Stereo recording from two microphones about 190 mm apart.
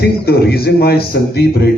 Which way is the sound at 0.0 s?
55° left (ahead or behind).